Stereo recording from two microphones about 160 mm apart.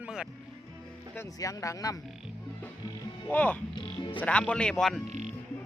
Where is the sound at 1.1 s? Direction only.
15° left (ahead or behind).